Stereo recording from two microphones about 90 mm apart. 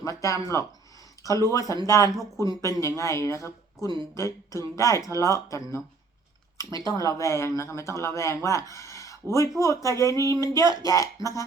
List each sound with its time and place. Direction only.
0.0 s speech: 35° left (ahead or behind)
4.5 s speech: 35° left (ahead or behind)